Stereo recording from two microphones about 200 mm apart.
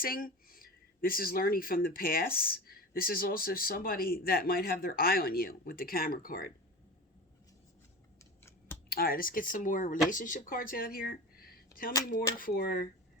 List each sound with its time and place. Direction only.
0.0 s speech: 45° left (ahead or behind)
8.2 s scissors: 15° left (ahead or behind)
8.9 s speech: 50° left (ahead or behind)